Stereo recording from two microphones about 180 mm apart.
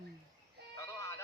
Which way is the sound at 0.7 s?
15° left (ahead or behind).